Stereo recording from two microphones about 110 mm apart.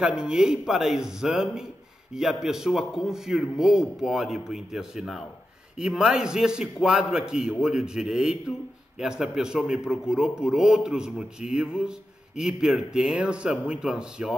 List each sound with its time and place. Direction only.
0.0 s a man's voice: 10° right (ahead or behind)